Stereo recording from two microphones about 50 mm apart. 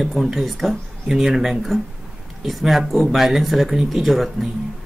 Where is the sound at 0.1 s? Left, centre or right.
Centre.